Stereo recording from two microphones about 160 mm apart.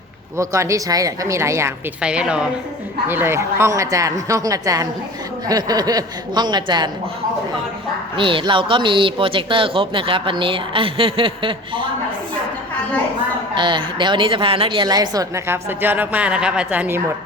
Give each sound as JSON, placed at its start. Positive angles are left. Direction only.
{"t": 0.3, "sound": "a woman's voice", "side_deg": -20}
{"t": 2.0, "sound": "a woman's voice", "side_deg": -5}
{"t": 8.1, "sound": "speech", "side_deg": -30}
{"t": 13.6, "sound": "a woman's voice", "side_deg": -30}